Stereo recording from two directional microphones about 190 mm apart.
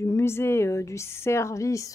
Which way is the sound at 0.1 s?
15° left (ahead or behind).